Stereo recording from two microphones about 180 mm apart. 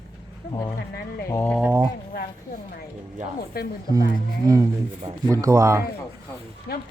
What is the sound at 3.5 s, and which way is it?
Speech, 55° left (ahead or behind).